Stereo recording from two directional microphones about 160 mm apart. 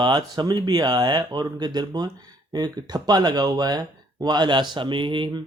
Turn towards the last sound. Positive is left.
turn(degrees=-30)  # may be behind; listen again after turning